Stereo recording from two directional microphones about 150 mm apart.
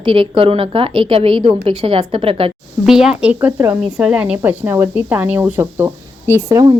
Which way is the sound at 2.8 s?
5° right (ahead or behind).